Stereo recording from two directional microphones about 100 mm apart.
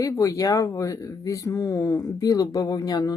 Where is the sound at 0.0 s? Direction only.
35° left (ahead or behind).